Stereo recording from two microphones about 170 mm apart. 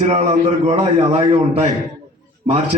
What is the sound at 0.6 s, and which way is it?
A man's voice, 40° right (ahead or behind).